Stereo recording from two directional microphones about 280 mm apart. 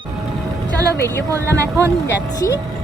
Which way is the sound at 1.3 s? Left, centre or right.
Centre.